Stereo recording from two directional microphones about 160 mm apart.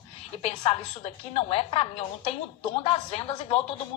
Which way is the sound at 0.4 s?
40° left (ahead or behind).